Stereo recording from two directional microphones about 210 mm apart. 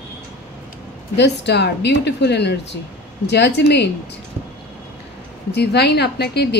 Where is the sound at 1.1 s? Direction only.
55° left (ahead or behind).